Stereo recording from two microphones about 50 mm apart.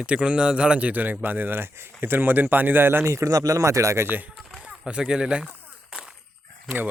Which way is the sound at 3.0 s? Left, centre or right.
Right.